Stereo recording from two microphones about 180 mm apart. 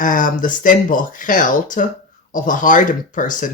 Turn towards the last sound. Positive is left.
turn(degrees=45)  # may be behind; listen again after turning